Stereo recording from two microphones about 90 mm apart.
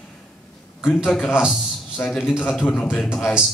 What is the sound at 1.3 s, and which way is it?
Speech, 10° right (ahead or behind).